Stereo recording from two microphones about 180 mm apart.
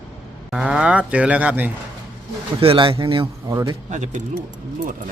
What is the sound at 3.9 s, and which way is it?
Speech, 40° right (ahead or behind).